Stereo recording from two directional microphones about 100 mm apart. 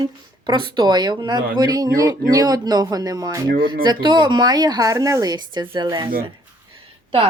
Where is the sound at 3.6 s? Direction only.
50° right (ahead or behind).